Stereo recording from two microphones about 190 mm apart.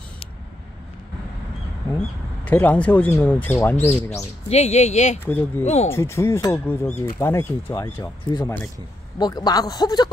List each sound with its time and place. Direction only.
2.4 s speech: 10° left (ahead or behind)
4.5 s speech: 35° left (ahead or behind)
5.2 s speech: 10° left (ahead or behind)